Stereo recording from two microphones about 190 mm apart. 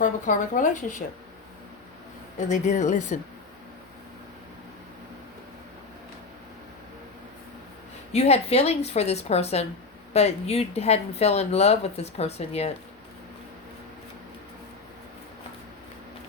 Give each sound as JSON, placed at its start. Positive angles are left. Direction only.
{"t": 0.0, "sound": "speech", "side_deg": 40}
{"t": 2.5, "sound": "speech", "side_deg": 40}
{"t": 8.1, "sound": "speech", "side_deg": 35}